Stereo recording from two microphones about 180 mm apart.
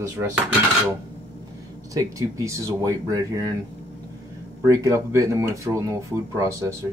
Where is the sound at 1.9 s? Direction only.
15° right (ahead or behind).